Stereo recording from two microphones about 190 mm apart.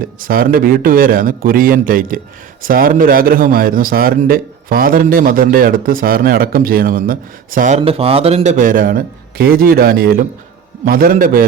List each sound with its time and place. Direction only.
0.2 s a man's voice: 50° right (ahead or behind)
7.8 s a man's voice: 30° right (ahead or behind); by 11.4 s 50° right (ahead or behind)